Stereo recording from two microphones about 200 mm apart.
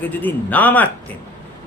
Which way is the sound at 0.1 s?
10° left (ahead or behind).